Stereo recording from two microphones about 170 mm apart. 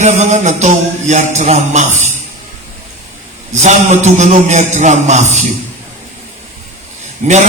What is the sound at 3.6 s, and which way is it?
A man's voice, 45° right (ahead or behind).